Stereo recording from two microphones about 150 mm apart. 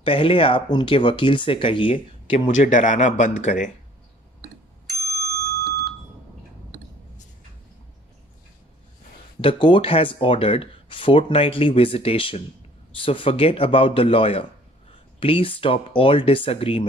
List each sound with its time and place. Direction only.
0.0 s speech: 35° left (ahead or behind)
2.5 s speech: 60° left (ahead or behind)
5.7 s smoke detector: 90° right
9.4 s speech: 35° left (ahead or behind)